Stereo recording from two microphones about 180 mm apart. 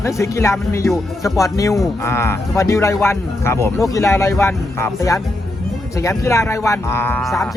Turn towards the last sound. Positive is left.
turn(degrees=15)  # may be behind; listen again after turning